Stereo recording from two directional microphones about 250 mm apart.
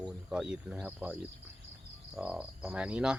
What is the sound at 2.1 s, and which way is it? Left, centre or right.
Speech, centre.